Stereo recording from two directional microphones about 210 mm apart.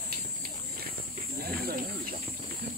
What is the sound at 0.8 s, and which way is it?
Livestock, 45° right (ahead or behind).